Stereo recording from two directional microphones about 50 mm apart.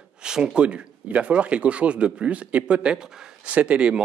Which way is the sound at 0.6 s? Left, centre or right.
Right.